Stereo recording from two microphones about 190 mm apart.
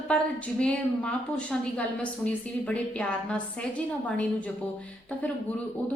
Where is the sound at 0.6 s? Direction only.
5° left (ahead or behind).